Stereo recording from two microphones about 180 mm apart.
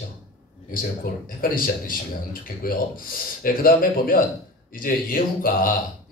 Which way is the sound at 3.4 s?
50° left (ahead or behind).